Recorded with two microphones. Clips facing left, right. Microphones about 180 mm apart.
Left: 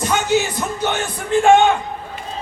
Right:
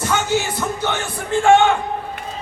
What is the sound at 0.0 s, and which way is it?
Music, 15° left (ahead or behind).